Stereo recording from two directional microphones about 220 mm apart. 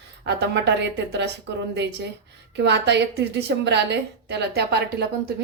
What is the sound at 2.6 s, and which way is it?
A woman's voice, 50° right (ahead or behind).